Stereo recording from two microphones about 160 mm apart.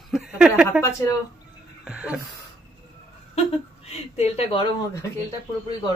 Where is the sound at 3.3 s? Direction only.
40° left (ahead or behind).